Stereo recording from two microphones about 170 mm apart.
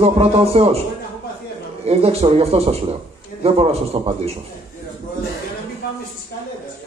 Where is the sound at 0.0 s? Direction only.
35° right (ahead or behind).